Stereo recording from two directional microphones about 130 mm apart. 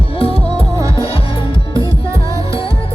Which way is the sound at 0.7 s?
25° right (ahead or behind).